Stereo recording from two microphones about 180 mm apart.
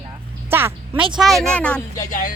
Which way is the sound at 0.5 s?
15° right (ahead or behind).